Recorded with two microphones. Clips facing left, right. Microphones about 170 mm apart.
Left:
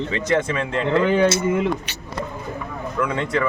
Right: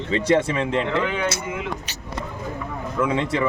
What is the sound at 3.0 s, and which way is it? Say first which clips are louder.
Speech: right 1 dB; 25° right (ahead or behind).